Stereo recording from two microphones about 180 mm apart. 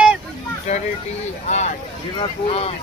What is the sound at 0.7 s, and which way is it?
Speech, 35° left (ahead or behind).